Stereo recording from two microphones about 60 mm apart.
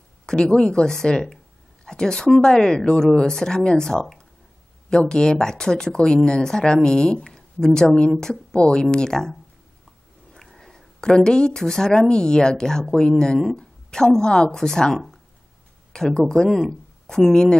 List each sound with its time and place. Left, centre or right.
0.3 s speech: centre